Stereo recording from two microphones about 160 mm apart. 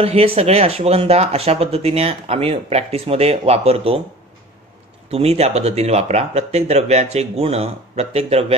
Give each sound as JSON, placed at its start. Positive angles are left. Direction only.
{"t": 0.0, "sound": "speech", "side_deg": -40}
{"t": 5.1, "sound": "speech", "side_deg": -40}